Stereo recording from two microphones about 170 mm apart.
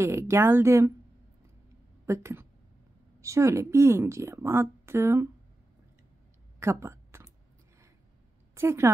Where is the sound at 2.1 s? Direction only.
15° right (ahead or behind).